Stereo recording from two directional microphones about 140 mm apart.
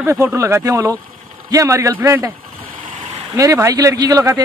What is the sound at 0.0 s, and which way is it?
Speech, 20° right (ahead or behind).